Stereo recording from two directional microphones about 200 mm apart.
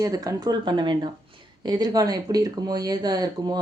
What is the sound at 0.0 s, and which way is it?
Speech, 15° right (ahead or behind).